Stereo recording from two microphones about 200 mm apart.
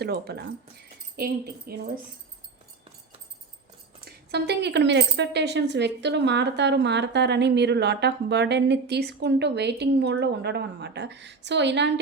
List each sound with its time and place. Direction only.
0.0 s speech: 55° right (ahead or behind)
4.0 s speech: 55° right (ahead or behind)